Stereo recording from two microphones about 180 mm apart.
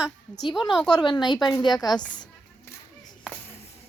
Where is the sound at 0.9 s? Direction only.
20° left (ahead or behind).